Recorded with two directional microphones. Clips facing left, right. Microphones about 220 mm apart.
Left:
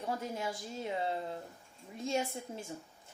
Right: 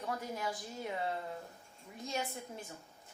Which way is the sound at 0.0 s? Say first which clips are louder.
Left 2 dB; 25° left (ahead or behind).